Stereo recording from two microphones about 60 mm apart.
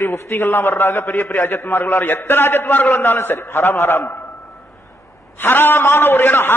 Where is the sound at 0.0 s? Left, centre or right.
Left.